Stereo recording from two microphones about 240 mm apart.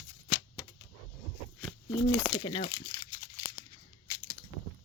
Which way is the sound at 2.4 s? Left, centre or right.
Centre.